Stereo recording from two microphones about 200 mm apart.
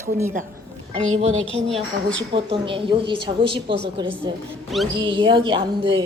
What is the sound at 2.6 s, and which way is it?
A woman's voice, 25° right (ahead or behind).